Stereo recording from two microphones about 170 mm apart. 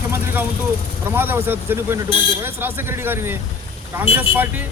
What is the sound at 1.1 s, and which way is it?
A man's voice, 10° right (ahead or behind).